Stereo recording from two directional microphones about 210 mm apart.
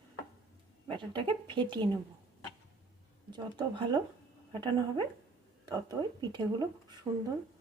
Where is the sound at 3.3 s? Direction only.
20° right (ahead or behind).